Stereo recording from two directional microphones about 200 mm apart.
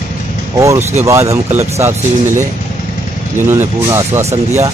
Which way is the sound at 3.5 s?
15° right (ahead or behind).